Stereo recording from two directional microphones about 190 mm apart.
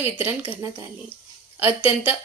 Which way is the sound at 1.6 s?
10° right (ahead or behind).